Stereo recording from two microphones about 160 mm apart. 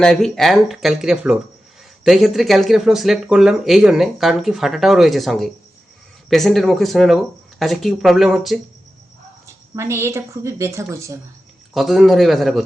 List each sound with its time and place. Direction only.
0.0 s speech: 5° left (ahead or behind)
9.5 s speech: 15° right (ahead or behind)
11.7 s speech: centre (ahead or behind)